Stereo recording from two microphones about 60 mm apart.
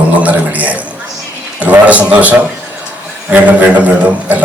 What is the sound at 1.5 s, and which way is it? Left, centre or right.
A man's voice, right.